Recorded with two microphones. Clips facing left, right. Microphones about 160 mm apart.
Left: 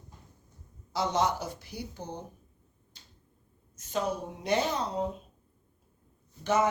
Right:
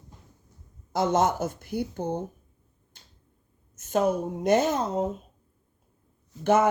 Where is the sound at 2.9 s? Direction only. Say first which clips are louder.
Right 1 dB; 55° right (ahead or behind).